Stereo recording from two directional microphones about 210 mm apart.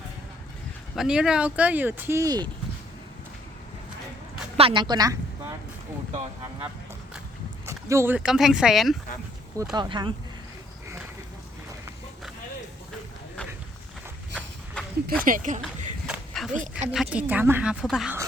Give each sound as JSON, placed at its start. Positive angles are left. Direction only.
{"t": 0.9, "sound": "speech", "side_deg": -5}
{"t": 4.5, "sound": "speech", "side_deg": -25}
{"t": 7.7, "sound": "speech", "side_deg": -15}
{"t": 9.7, "sound": "speech", "side_deg": -20}
{"t": 14.3, "sound": "a sound", "side_deg": 5}
{"t": 15.2, "sound": "speech", "side_deg": -40}
{"t": 16.0, "sound": "a sound", "side_deg": 0}
{"t": 16.5, "sound": "speech", "side_deg": -35}
{"t": 16.9, "sound": "speech", "side_deg": -5}